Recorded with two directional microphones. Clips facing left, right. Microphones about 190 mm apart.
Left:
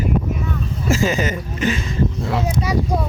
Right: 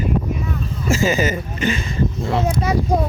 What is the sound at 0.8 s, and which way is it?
Speech, centre (ahead or behind).